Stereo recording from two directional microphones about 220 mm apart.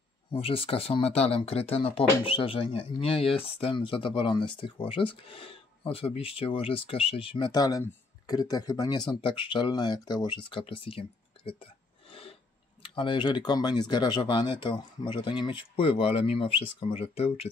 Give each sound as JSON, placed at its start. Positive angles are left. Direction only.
{"t": 0.3, "sound": "speech", "side_deg": 25}